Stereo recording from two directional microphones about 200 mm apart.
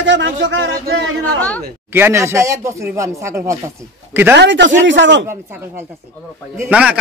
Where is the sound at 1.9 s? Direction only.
10° right (ahead or behind).